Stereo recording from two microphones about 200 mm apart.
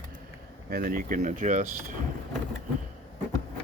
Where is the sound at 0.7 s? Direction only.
45° right (ahead or behind).